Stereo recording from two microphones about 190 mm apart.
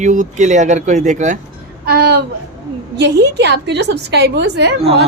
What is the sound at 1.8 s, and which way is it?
A woman's voice, 55° right (ahead or behind).